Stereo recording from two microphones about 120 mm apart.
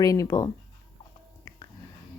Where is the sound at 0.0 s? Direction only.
30° left (ahead or behind).